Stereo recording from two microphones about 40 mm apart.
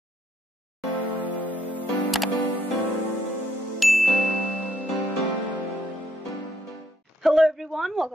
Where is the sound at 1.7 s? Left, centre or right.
Left.